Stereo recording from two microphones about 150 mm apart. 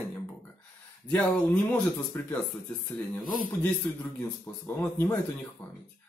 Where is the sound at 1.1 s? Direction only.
10° left (ahead or behind).